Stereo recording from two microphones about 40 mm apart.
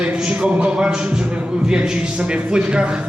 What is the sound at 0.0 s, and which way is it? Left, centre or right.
A man's voice, right.